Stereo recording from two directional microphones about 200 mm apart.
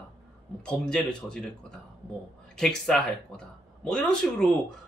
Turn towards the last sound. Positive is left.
turn(degrees=5)  # may be behind; listen again after turning